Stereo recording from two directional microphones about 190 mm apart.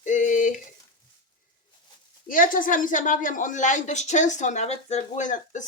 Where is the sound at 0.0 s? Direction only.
40° left (ahead or behind).